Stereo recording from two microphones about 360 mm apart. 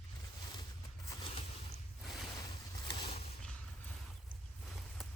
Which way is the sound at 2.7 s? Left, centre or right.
Centre.